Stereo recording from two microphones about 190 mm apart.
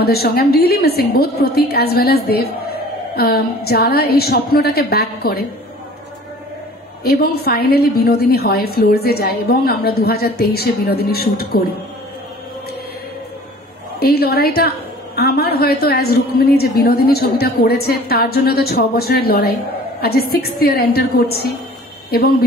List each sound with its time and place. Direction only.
0.0 s a woman's voice: 55° left (ahead or behind)
7.1 s a woman's voice: 55° left (ahead or behind)
13.9 s a woman's voice: 55° left (ahead or behind)